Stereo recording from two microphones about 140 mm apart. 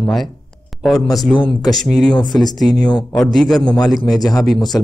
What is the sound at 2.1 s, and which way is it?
Speech, 30° left (ahead or behind).